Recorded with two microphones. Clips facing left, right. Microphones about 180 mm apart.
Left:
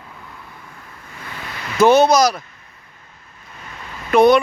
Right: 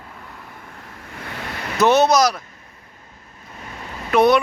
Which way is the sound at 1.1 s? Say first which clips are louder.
Right 2 dB; 60° right (ahead or behind).